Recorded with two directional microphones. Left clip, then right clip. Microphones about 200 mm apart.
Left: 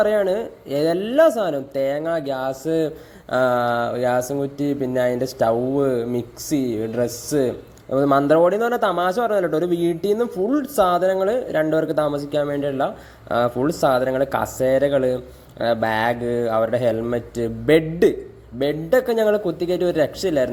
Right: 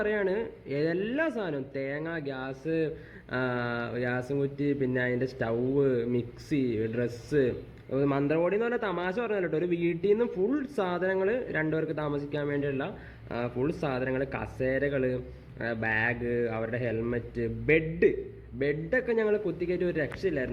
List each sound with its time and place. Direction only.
0.0 s speech: 15° left (ahead or behind)
18.6 s speech: 15° left (ahead or behind)